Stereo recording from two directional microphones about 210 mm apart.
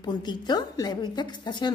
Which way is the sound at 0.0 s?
20° left (ahead or behind).